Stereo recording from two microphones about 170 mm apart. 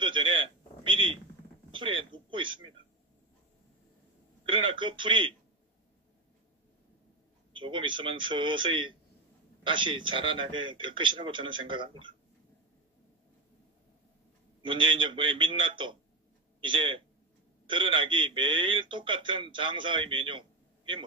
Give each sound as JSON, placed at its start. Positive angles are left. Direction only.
{"t": 0.0, "sound": "a sound", "side_deg": -30}
{"t": 4.5, "sound": "speech", "side_deg": -30}
{"t": 7.5, "sound": "speech", "side_deg": -30}
{"t": 14.6, "sound": "speech", "side_deg": -30}